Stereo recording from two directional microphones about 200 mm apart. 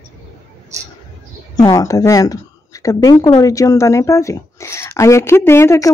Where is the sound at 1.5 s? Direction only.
15° left (ahead or behind).